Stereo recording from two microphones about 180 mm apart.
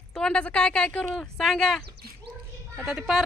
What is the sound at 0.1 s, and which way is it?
A woman's voice, 5° left (ahead or behind).